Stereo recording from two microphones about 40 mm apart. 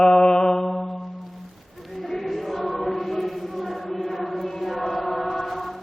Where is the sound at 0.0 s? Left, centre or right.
Centre.